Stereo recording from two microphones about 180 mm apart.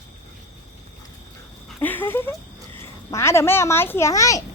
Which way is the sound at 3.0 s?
15° left (ahead or behind).